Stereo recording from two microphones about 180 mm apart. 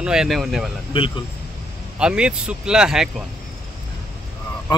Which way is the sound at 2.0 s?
5° right (ahead or behind).